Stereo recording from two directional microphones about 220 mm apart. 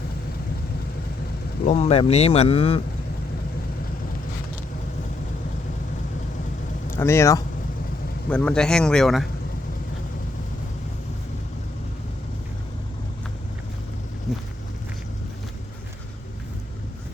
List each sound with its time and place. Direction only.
1.6 s speech: 30° left (ahead or behind)
6.9 s speech: 10° left (ahead or behind)
14.3 s a sound: centre (ahead or behind)